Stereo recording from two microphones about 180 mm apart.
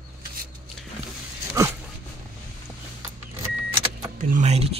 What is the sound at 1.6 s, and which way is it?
Dog, 15° right (ahead or behind).